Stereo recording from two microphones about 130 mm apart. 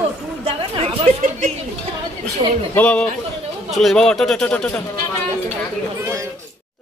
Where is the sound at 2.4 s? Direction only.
40° right (ahead or behind).